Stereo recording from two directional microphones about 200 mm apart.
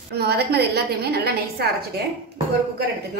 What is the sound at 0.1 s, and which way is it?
A woman's voice, 55° right (ahead or behind).